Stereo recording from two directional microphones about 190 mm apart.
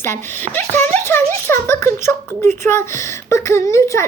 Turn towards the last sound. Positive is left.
turn(degrees=15)  # may be behind; listen again after turning